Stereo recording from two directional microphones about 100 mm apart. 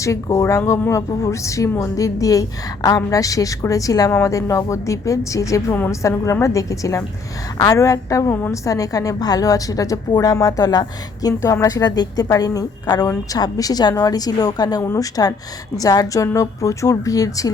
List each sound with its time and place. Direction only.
0.0 s a woman's voice: 30° left (ahead or behind)